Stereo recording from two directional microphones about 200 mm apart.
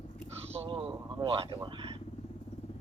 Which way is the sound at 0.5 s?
25° right (ahead or behind).